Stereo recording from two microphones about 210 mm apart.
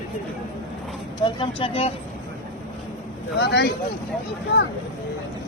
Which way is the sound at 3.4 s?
55° left (ahead or behind).